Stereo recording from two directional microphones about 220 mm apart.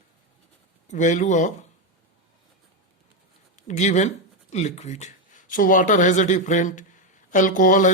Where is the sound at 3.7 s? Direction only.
30° left (ahead or behind).